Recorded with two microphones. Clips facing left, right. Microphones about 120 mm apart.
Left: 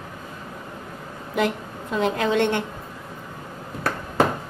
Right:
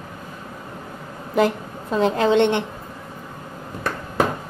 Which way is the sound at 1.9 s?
30° right (ahead or behind).